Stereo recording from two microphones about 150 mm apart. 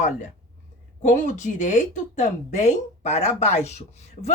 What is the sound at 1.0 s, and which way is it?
A woman's voice, 55° left (ahead or behind).